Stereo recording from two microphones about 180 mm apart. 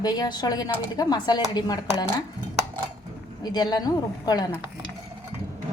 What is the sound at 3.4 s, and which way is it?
A woman's voice, 20° left (ahead or behind).